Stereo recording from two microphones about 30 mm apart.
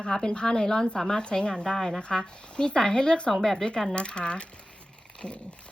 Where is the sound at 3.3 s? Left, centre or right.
Centre.